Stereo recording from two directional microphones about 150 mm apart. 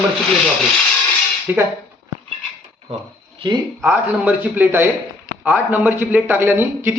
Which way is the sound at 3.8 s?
10° right (ahead or behind).